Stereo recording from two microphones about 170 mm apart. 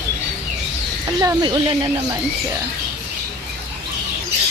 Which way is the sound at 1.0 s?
20° right (ahead or behind).